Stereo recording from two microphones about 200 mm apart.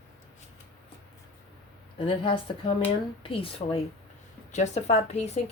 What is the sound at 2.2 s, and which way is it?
A woman's voice, 25° left (ahead or behind).